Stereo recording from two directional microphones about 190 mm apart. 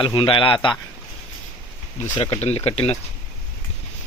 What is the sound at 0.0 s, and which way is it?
Speech, 25° left (ahead or behind).